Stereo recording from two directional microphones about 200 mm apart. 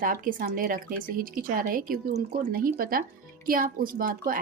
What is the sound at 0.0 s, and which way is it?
Speech, 45° right (ahead or behind).